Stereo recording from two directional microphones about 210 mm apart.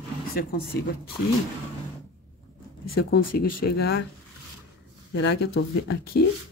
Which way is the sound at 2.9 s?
50° left (ahead or behind).